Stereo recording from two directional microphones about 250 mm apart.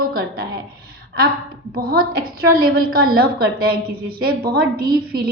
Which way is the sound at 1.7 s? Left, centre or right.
Right.